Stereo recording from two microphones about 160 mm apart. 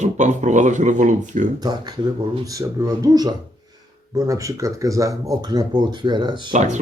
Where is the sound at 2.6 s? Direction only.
20° right (ahead or behind).